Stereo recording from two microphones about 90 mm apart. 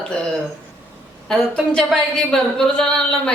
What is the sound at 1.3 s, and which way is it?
A woman's voice, 5° left (ahead or behind).